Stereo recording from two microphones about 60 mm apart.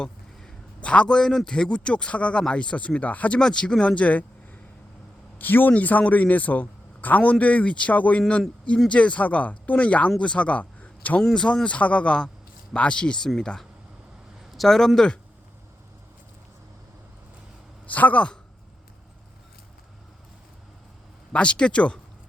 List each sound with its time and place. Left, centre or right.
0.8 s a man's voice: centre
3.3 s a man's voice: centre
5.4 s a man's voice: left
11.2 s a man's voice: centre
17.8 s a man's voice: left
21.3 s a man's voice: centre